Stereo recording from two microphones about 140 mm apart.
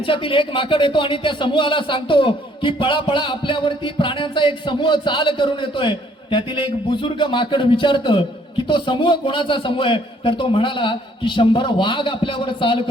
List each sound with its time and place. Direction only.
0.0 s a man's voice: 40° left (ahead or behind)